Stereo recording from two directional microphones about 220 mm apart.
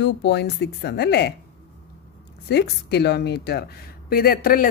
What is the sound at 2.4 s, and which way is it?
A woman's voice, 50° left (ahead or behind).